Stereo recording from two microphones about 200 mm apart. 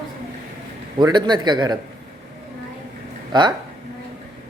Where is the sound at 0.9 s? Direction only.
20° right (ahead or behind).